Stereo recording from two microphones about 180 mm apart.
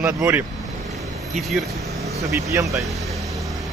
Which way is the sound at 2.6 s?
Centre (ahead or behind).